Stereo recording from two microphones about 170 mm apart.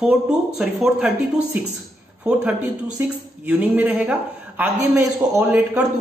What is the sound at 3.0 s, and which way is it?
A man's voice, 10° right (ahead or behind).